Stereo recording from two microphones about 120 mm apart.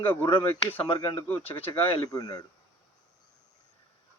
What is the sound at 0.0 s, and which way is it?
Speech, 15° left (ahead or behind).